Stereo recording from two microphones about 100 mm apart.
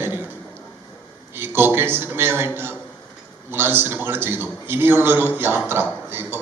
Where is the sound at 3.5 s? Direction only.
20° right (ahead or behind).